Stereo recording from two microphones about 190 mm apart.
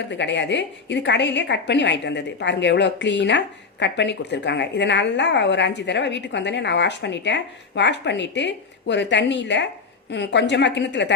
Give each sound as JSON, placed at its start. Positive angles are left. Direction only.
{"t": 0.1, "sound": "a woman's voice", "side_deg": 70}